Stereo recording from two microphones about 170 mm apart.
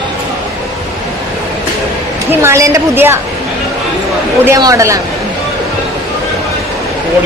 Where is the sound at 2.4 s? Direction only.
15° right (ahead or behind).